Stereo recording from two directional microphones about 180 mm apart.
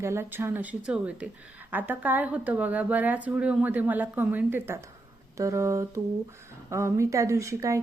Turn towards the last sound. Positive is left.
turn(degrees=-15)  # may be behind; listen again after turning